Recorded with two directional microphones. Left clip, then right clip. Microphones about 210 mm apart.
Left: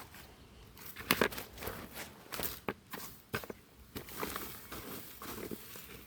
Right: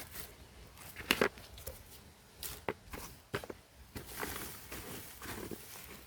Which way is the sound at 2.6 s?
30° left (ahead or behind).